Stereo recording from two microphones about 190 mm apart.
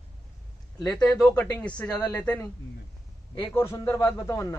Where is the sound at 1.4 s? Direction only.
5° left (ahead or behind).